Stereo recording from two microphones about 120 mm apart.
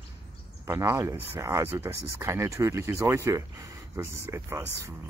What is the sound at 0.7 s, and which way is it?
Speech, 20° right (ahead or behind).